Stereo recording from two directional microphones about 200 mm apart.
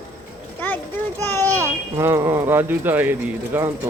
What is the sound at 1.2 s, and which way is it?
Speech, 10° left (ahead or behind).